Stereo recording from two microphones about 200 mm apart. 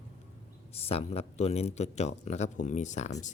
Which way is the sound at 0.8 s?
30° left (ahead or behind).